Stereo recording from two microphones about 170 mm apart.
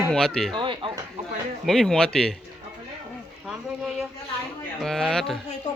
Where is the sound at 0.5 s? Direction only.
30° right (ahead or behind).